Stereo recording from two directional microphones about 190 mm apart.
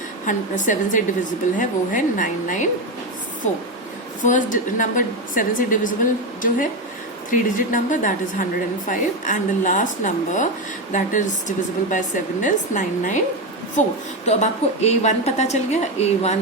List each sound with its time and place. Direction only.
0.3 s a woman's voice: 40° left (ahead or behind)
7.3 s a woman's voice: 45° left (ahead or behind)